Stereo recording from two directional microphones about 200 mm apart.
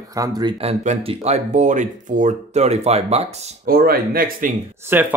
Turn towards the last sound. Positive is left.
turn(degrees=-10)  # may be behind; listen again after turning